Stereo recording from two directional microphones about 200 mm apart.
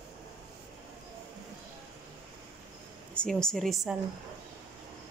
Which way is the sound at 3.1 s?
5° left (ahead or behind).